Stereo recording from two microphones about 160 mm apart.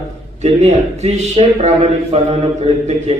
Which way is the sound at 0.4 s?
40° right (ahead or behind).